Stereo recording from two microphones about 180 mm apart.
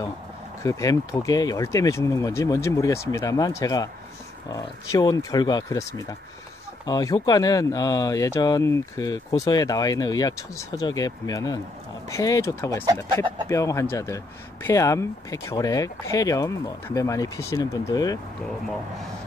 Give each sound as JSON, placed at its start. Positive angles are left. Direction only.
{"t": 0.6, "sound": "a man's voice", "side_deg": 15}